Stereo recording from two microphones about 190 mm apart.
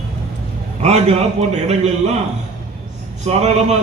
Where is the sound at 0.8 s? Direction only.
35° right (ahead or behind).